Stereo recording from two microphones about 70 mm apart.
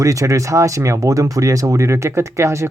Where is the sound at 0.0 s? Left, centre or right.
Right.